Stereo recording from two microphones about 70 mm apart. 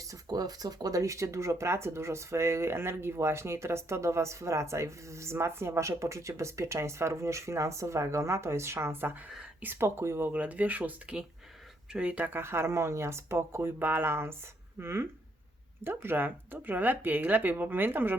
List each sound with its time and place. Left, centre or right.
0.1 s speech: right